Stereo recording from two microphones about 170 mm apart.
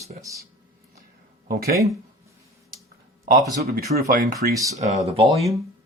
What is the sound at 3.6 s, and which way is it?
Speech, 60° right (ahead or behind).